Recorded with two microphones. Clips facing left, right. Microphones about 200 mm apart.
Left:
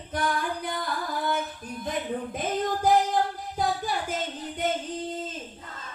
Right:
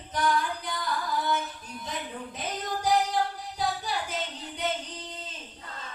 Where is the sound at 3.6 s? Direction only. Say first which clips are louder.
Left 3 dB; 50° left (ahead or behind).